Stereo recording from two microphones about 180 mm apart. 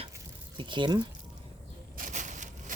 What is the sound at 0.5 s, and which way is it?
Speech, 25° right (ahead or behind).